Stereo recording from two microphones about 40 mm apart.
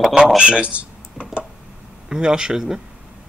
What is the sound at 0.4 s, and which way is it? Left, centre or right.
Speech, right.